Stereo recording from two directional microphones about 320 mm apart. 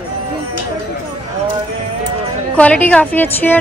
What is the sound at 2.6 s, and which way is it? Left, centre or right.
A woman's voice, centre.